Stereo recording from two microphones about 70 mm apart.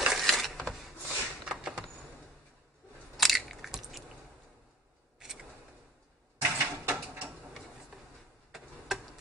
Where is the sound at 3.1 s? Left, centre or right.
Centre.